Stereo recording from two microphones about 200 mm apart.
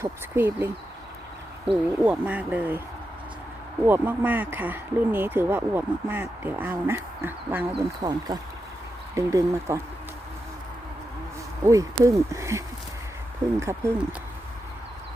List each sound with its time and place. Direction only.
0.0 s speech: 10° right (ahead or behind)
3.8 s speech: 10° right (ahead or behind)
11.6 s speech: 15° right (ahead or behind)